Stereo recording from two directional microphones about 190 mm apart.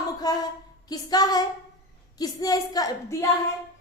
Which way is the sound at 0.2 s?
20° left (ahead or behind).